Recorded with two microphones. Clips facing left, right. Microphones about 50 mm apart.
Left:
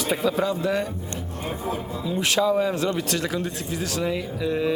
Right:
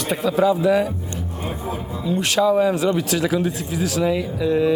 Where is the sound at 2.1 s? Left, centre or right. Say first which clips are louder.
Right 4 dB; centre.